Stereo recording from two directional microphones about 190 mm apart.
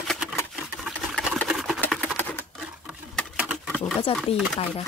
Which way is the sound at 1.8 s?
10° left (ahead or behind).